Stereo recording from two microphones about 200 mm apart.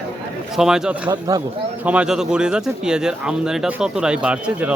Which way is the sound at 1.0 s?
20° right (ahead or behind).